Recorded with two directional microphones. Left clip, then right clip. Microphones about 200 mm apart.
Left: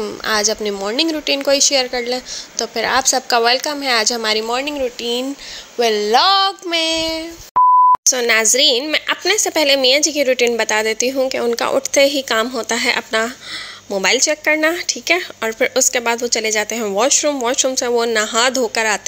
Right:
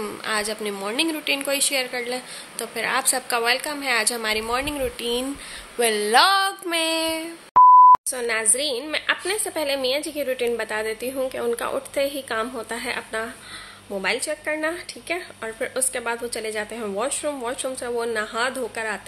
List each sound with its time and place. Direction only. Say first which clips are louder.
0.2 s a woman's voice: left 9 dB; 30° left (ahead or behind)
5.8 s child singing: left 4 dB; 25° left (ahead or behind)
7.5 s beep: even; centre (ahead or behind)
8.1 s a woman's voice: left 10 dB; 40° left (ahead or behind)